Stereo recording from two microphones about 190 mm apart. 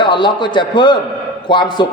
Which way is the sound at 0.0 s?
25° left (ahead or behind).